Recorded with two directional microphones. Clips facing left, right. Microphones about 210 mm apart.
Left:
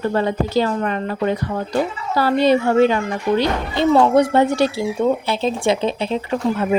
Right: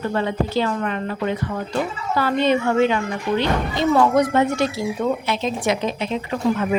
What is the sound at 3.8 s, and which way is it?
Speech, 25° left (ahead or behind).